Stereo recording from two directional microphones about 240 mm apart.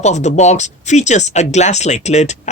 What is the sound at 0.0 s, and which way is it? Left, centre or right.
Speech, left.